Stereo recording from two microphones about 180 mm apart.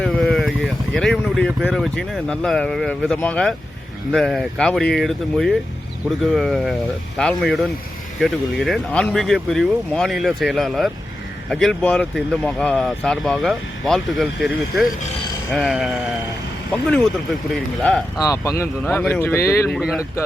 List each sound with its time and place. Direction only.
0.1 s speech: centre (ahead or behind)
15.5 s speech: centre (ahead or behind)
17.7 s speech: centre (ahead or behind)
18.2 s speech: 20° left (ahead or behind)
19.8 s speech: 5° right (ahead or behind)